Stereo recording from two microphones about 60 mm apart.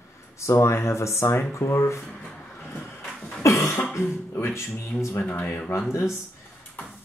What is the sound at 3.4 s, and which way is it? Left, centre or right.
Cough, left.